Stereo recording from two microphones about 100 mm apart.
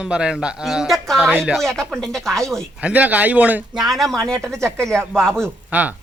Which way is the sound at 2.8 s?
15° right (ahead or behind).